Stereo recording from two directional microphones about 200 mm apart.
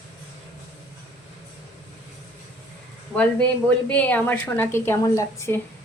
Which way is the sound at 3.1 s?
5° left (ahead or behind).